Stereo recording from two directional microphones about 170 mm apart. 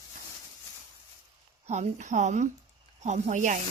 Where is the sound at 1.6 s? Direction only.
40° right (ahead or behind).